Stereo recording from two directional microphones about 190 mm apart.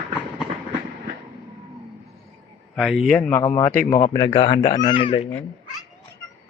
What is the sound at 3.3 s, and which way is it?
Speech, 15° left (ahead or behind).